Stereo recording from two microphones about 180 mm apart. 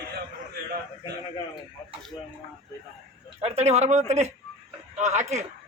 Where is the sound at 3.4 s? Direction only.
35° right (ahead or behind).